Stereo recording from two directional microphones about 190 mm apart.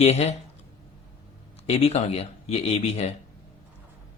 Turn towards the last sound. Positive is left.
turn(degrees=35)  # may be behind; listen again after turning